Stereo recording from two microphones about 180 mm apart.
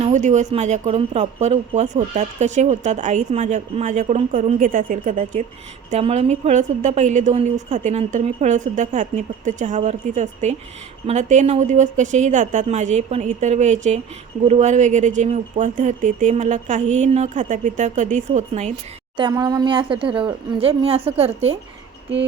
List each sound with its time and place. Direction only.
0.0 s speech: 40° right (ahead or behind)
5.9 s speech: 35° right (ahead or behind)
19.1 s speech: 25° right (ahead or behind)